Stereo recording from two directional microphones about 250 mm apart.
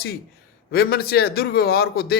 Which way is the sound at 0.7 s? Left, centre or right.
Left.